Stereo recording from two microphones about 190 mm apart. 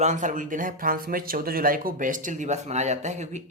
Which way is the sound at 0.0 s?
40° right (ahead or behind).